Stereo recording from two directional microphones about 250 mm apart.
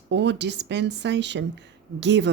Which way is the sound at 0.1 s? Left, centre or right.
Right.